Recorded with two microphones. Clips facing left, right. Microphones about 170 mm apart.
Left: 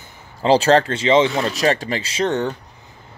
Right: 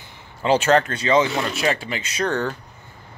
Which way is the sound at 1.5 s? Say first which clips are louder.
Left 4 dB; 40° left (ahead or behind).